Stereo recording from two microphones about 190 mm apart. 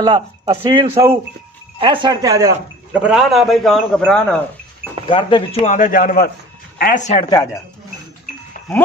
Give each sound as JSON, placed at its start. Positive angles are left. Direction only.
{"t": 0.0, "sound": "speech", "side_deg": -25}
{"t": 3.0, "sound": "a man's voice", "side_deg": -5}
{"t": 5.1, "sound": "speech", "side_deg": 25}
{"t": 5.7, "sound": "a man's voice", "side_deg": 45}